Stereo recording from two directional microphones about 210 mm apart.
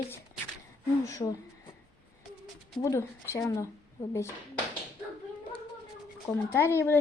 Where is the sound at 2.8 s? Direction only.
15° left (ahead or behind).